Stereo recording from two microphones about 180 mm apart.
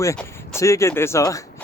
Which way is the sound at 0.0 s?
15° left (ahead or behind).